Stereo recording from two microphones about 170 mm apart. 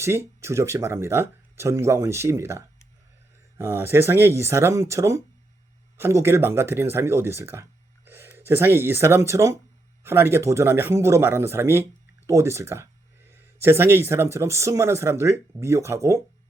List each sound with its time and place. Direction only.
0.0 s speech: 15° right (ahead or behind)